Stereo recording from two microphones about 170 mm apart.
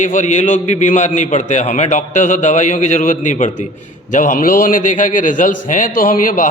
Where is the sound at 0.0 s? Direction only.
50° left (ahead or behind).